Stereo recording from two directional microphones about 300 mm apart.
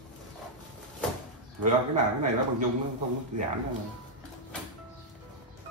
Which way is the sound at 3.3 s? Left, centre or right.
Right.